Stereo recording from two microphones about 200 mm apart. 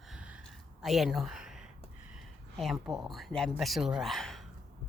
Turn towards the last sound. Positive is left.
turn(degrees=0)  # may be behind; listen again after turning